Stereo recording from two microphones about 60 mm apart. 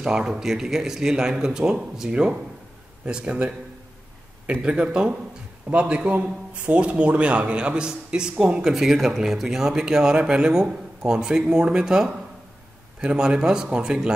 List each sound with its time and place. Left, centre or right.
0.0 s a man's voice: centre
4.6 s a man's voice: centre
13.1 s a man's voice: centre